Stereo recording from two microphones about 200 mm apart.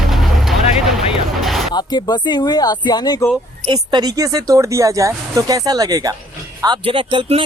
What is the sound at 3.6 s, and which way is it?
Speech, 20° right (ahead or behind).